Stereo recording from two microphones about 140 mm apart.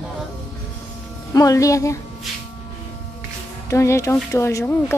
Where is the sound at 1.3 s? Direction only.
25° left (ahead or behind).